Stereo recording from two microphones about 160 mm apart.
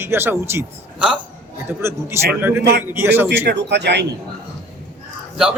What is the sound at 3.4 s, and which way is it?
Speech, 90° right.